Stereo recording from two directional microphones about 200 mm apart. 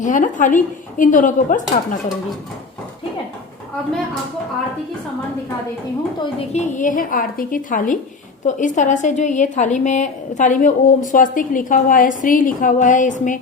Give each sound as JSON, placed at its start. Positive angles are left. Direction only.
{"t": 0.0, "sound": "a woman's voice", "side_deg": 40}
{"t": 6.5, "sound": "a woman's voice", "side_deg": 35}